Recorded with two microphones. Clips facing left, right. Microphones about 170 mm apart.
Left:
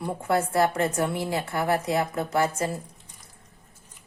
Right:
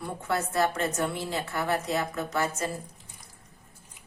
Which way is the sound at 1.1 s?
15° left (ahead or behind).